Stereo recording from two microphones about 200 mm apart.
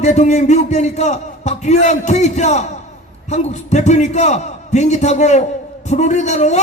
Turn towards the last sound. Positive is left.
turn(degrees=35)  # may be behind; listen again after turning